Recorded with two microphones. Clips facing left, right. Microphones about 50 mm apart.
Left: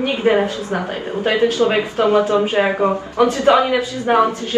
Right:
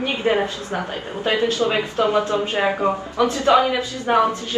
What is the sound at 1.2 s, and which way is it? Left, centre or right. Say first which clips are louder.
A woman's voice: left 4 dB; left.